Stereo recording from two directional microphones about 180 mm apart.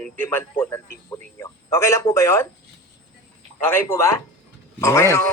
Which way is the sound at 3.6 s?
10° left (ahead or behind).